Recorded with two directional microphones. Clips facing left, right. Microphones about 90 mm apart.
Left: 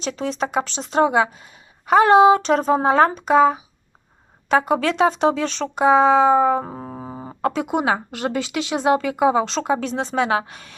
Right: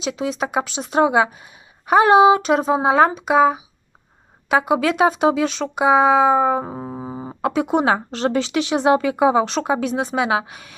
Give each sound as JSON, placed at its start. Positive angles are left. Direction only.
{"t": 0.0, "sound": "speech", "side_deg": -5}